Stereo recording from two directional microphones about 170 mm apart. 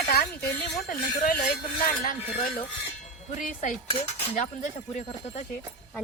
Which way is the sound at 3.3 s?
45° left (ahead or behind).